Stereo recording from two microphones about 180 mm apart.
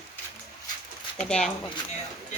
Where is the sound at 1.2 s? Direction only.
5° left (ahead or behind).